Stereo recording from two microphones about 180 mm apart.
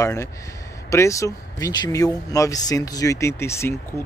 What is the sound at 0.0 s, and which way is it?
Speech, 15° left (ahead or behind).